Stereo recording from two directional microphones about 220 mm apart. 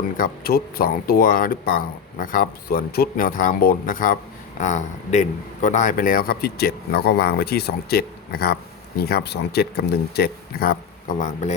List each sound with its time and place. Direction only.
0.2 s a man's voice: 40° left (ahead or behind)
11.2 s speech: 35° left (ahead or behind)